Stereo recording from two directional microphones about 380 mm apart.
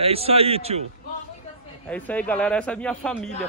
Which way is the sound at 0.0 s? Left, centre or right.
Centre.